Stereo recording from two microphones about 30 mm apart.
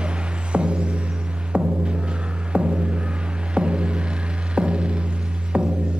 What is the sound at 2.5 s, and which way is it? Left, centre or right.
Music, right.